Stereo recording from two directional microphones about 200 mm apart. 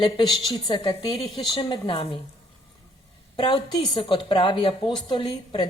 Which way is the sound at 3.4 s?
20° left (ahead or behind).